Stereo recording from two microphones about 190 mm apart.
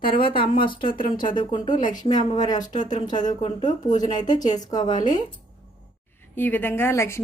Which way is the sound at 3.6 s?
40° left (ahead or behind).